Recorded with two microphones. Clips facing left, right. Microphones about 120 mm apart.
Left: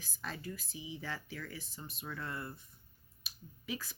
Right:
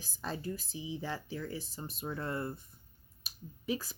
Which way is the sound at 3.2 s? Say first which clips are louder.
Right 5 dB; 35° right (ahead or behind).